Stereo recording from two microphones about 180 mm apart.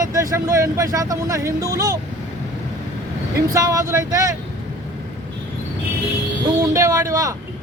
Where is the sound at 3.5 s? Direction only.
20° right (ahead or behind).